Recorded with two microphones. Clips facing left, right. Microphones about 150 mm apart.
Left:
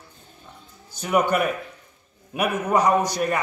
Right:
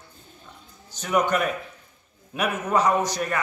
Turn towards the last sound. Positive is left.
turn(degrees=10)  # may be behind; listen again after turning